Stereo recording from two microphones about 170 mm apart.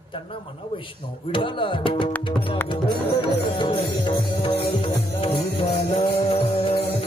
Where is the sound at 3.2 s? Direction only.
30° left (ahead or behind).